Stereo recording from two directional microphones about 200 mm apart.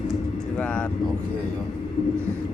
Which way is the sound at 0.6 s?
5° left (ahead or behind).